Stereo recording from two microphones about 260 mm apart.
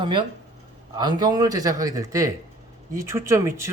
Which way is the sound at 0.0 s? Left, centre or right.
Centre.